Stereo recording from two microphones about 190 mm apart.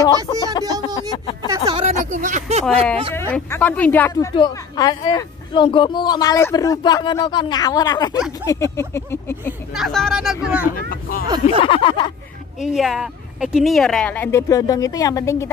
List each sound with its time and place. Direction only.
0.0 s speech: 20° left (ahead or behind)
0.9 s a sound: 30° left (ahead or behind)
1.7 s speech: 35° right (ahead or behind)
3.2 s speech: 10° left (ahead or behind)
4.1 s speech: 20° left (ahead or behind)
9.8 s speech: centre (ahead or behind)
10.9 s speech: 50° left (ahead or behind)
11.2 s speech: 25° right (ahead or behind)
11.6 s speech: 25° left (ahead or behind)
12.6 s speech: centre (ahead or behind); by 15.5 s 15° left (ahead or behind)